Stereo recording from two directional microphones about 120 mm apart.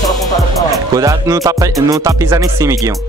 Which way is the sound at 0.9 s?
30° right (ahead or behind).